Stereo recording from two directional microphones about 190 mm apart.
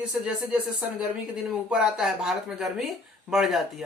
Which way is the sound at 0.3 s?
5° right (ahead or behind).